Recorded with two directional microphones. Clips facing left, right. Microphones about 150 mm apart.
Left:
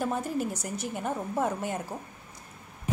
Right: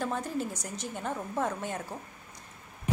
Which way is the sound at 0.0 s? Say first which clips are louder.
Left 3 dB; 10° left (ahead or behind).